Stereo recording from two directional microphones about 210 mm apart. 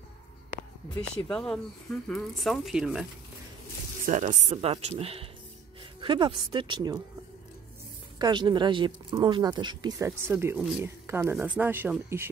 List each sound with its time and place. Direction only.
1.3 s speech: 5° left (ahead or behind)
4.0 s speech: 35° right (ahead or behind); by 7.0 s 20° right (ahead or behind)
8.2 s speech: 20° right (ahead or behind)